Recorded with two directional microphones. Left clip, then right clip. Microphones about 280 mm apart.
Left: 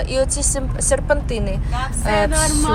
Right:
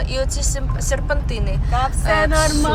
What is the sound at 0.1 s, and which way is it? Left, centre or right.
Speech, centre.